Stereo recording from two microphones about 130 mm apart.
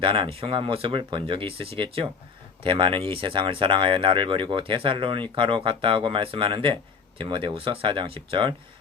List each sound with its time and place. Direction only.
0.0 s speech: 40° right (ahead or behind)